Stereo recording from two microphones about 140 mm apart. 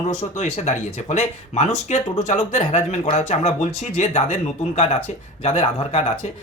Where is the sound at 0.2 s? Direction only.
55° left (ahead or behind).